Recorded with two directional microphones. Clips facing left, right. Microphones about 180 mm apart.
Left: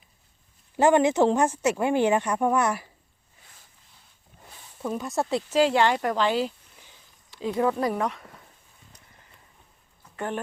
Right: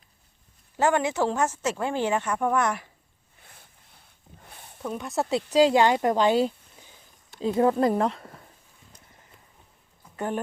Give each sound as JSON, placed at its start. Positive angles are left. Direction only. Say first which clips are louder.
{"t": 0.8, "sound": "speech", "louder": "left 4 dB", "side_deg": 20}
{"t": 4.8, "sound": "speech", "louder": "left 1 dB", "side_deg": 0}
{"t": 5.5, "sound": "speech", "louder": "right 3 dB", "side_deg": -15}
{"t": 7.3, "sound": "speech", "louder": "right 3 dB", "side_deg": -30}
{"t": 10.0, "sound": "a sound", "louder": "right 2 dB", "side_deg": -10}